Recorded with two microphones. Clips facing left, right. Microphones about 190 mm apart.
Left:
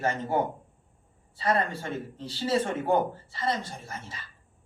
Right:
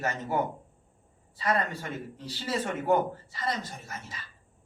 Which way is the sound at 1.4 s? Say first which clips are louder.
Left 2 dB; 30° left (ahead or behind).